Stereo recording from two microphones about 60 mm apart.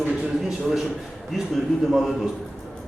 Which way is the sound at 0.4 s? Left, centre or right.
Centre.